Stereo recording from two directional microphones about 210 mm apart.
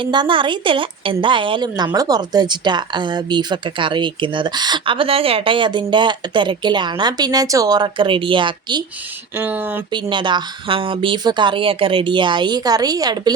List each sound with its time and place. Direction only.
0.0 s a woman's voice: 20° right (ahead or behind)
9.3 s speech: 10° right (ahead or behind)
9.9 s a woman's voice: 20° right (ahead or behind)